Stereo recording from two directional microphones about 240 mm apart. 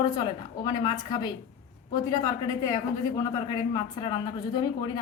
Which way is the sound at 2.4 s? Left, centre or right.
Centre.